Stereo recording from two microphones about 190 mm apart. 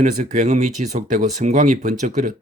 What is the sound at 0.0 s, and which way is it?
Speech, 45° right (ahead or behind).